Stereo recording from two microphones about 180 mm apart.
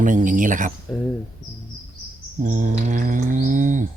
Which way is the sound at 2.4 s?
45° right (ahead or behind).